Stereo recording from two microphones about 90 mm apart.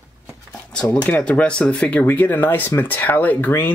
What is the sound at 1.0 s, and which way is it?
Speech, 15° left (ahead or behind).